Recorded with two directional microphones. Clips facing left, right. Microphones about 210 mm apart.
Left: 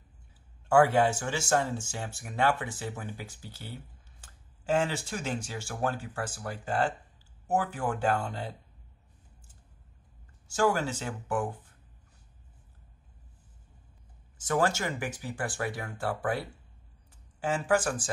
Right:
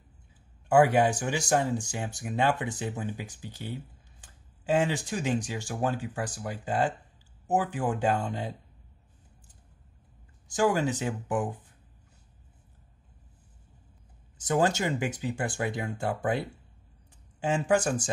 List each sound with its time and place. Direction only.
0.7 s speech: 15° right (ahead or behind)
10.5 s speech: 15° right (ahead or behind)
14.4 s speech: 20° right (ahead or behind)